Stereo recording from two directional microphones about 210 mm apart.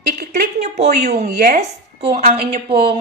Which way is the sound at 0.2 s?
35° right (ahead or behind).